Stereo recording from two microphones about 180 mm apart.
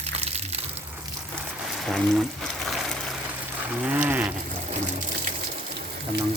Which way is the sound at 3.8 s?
10° right (ahead or behind).